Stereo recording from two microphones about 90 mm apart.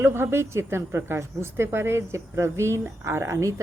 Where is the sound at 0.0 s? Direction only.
30° right (ahead or behind).